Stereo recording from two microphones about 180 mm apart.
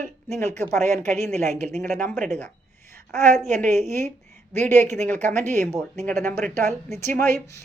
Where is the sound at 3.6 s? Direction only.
40° right (ahead or behind).